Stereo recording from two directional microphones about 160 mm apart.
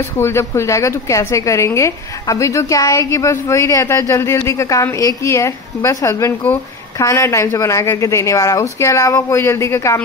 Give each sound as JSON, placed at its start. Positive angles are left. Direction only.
{"t": 0.2, "sound": "a woman's voice", "side_deg": 15}